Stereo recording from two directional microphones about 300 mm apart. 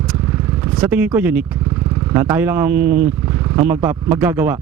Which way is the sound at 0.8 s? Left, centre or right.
Centre.